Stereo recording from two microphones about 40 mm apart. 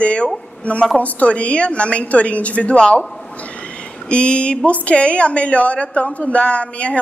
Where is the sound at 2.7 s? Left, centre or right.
Left.